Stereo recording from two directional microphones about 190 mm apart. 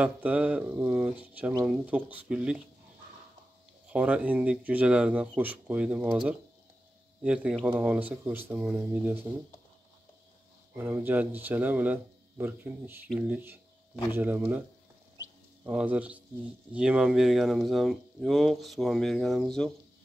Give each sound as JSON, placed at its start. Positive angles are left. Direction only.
{"t": 0.0, "sound": "speech", "side_deg": -5}
{"t": 3.9, "sound": "speech", "side_deg": -5}
{"t": 10.7, "sound": "speech", "side_deg": -10}
{"t": 15.6, "sound": "speech", "side_deg": -5}